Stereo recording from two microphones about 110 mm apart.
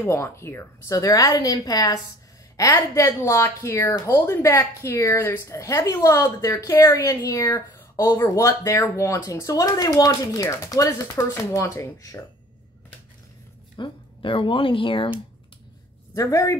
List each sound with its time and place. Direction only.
0.0 s a woman's voice: 25° left (ahead or behind)
13.7 s speech: 50° left (ahead or behind)
16.2 s speech: 30° left (ahead or behind)